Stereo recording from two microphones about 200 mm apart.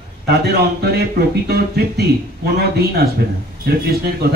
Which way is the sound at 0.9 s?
50° right (ahead or behind).